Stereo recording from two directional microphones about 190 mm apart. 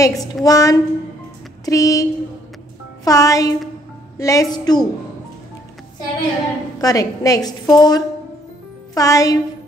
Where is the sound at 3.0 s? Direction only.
15° left (ahead or behind).